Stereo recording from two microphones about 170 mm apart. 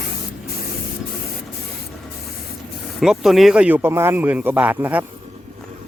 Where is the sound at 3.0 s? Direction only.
5° right (ahead or behind).